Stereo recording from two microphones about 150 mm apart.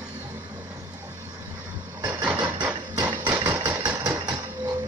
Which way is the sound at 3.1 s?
15° right (ahead or behind).